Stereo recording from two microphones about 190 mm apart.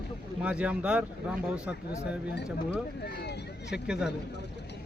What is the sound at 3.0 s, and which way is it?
Speech, 60° left (ahead or behind).